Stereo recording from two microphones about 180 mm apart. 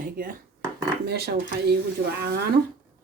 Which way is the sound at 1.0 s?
60° right (ahead or behind).